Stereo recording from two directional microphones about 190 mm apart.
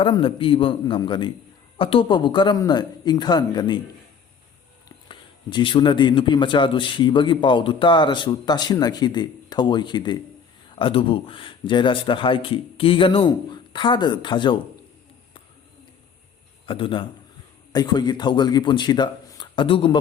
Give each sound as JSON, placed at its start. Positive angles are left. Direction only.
{"t": 0.0, "sound": "a man's voice", "side_deg": 25}
{"t": 4.9, "sound": "a man's voice", "side_deg": 25}
{"t": 16.6, "sound": "a man's voice", "side_deg": 25}